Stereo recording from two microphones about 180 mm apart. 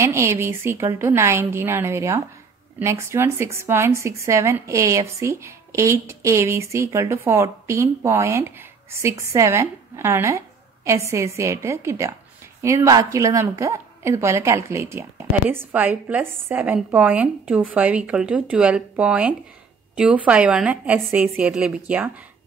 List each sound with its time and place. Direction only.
0.0 s speech: 15° right (ahead or behind)